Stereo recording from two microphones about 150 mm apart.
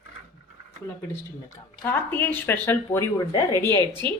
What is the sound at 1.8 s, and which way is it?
Speech, 15° left (ahead or behind).